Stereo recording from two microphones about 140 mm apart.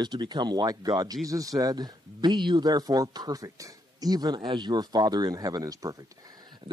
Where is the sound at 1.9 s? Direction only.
30° right (ahead or behind).